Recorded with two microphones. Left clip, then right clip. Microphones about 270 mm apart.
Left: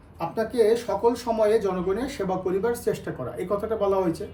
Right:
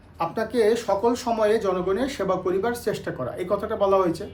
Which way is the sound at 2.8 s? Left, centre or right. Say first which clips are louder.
Right 1 dB; centre.